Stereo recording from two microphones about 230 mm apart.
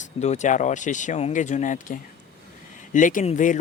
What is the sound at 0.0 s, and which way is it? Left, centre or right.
Speech, left.